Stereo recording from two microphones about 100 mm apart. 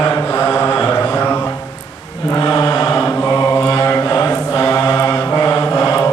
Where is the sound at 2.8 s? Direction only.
20° left (ahead or behind).